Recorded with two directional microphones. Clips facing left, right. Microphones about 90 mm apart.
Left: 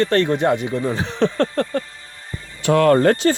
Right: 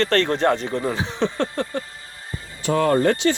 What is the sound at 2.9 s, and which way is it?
Speech, 45° left (ahead or behind).